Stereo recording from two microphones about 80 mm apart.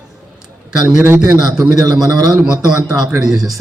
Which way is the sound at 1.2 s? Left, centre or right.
Right.